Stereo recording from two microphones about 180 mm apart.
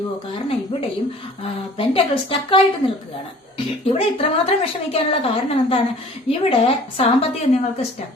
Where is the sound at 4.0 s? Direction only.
35° left (ahead or behind).